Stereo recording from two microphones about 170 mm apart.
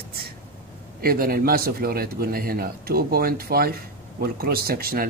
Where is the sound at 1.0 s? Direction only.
60° right (ahead or behind).